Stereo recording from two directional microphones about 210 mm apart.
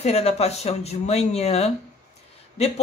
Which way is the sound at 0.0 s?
30° left (ahead or behind).